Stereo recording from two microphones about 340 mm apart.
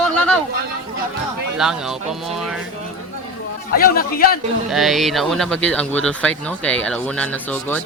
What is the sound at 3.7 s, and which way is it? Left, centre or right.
Speech, left.